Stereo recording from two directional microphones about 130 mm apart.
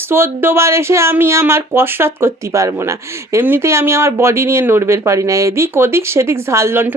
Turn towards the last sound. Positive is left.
turn(degrees=-20)  # may be behind; listen again after turning